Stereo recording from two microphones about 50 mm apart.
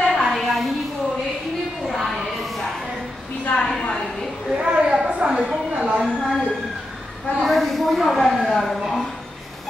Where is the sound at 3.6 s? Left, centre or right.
Centre.